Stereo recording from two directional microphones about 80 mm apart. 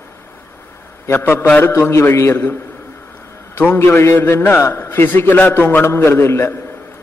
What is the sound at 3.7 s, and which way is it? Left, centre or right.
A man's voice, left.